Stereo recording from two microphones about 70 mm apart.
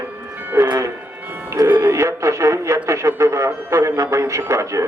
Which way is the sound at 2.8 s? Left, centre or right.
Right.